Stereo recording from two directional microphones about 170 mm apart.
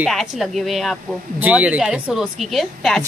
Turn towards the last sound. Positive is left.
turn(degrees=0)  # may be behind; listen again after turning